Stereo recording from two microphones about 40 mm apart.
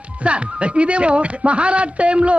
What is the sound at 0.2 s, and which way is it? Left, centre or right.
Speech, right.